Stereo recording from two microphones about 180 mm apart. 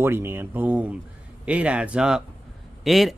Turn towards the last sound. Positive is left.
turn(degrees=0)  # may be behind; listen again after turning